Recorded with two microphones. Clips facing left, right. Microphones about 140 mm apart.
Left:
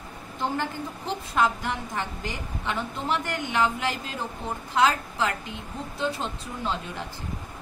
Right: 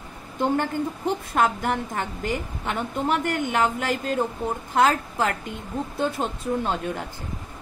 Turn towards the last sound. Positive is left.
turn(degrees=-50)  # may be behind; listen again after turning